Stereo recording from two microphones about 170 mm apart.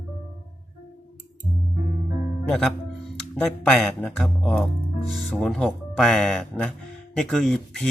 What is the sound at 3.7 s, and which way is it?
Speech, 5° left (ahead or behind).